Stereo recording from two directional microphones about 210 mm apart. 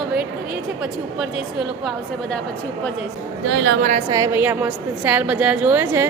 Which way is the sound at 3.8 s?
35° right (ahead or behind).